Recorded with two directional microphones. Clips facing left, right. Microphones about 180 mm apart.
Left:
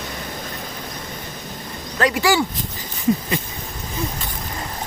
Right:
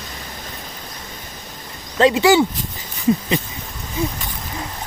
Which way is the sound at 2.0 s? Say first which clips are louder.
Right 5 dB; 25° right (ahead or behind).